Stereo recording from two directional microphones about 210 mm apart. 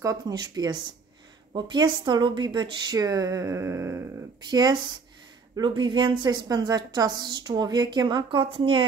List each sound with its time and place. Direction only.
0.0 s a woman's voice: 15° right (ahead or behind)